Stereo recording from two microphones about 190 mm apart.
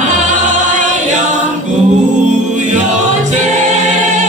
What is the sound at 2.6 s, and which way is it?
Choir, 40° right (ahead or behind).